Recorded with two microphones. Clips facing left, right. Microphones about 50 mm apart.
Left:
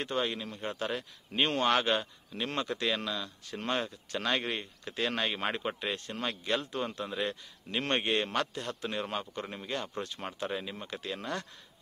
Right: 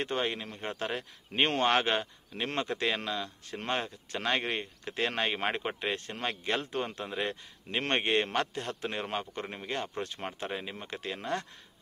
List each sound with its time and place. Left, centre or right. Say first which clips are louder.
0.0 s a man's voice: right 1 dB; right